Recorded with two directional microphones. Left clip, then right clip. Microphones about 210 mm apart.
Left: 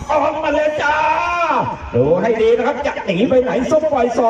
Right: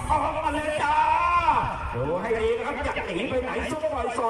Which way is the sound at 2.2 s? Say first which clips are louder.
Left 11 dB; 45° left (ahead or behind).